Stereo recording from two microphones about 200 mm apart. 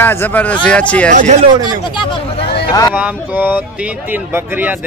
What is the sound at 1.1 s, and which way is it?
Speech, 40° right (ahead or behind).